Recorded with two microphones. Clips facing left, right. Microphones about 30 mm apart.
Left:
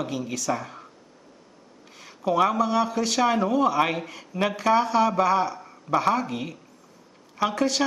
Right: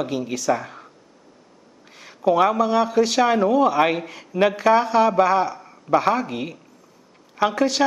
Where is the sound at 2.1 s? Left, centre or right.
Centre.